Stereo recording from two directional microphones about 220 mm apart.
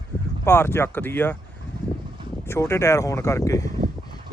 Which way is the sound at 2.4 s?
10° left (ahead or behind).